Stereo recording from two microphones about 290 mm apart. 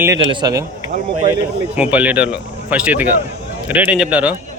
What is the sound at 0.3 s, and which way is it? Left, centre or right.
Speech, centre.